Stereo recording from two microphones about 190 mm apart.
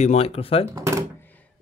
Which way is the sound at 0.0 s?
35° left (ahead or behind).